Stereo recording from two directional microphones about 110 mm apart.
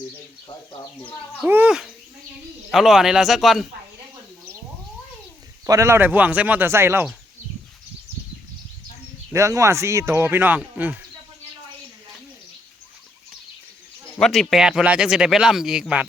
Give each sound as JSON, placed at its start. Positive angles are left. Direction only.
{"t": 1.5, "sound": "speech", "side_deg": -20}
{"t": 2.6, "sound": "speech", "side_deg": -5}
{"t": 5.6, "sound": "speech", "side_deg": -30}
{"t": 9.3, "sound": "speech", "side_deg": -30}
{"t": 14.2, "sound": "speech", "side_deg": 5}